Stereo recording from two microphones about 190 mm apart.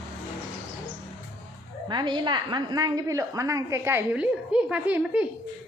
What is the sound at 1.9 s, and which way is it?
A woman's voice, 25° right (ahead or behind).